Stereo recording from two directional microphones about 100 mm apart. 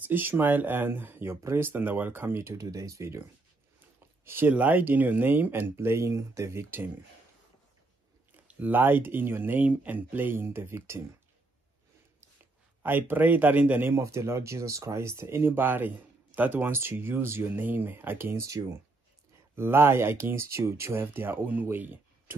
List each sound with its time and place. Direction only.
0.0 s speech: 20° right (ahead or behind)
8.5 s speech: 15° right (ahead or behind)
12.8 s speech: 20° right (ahead or behind)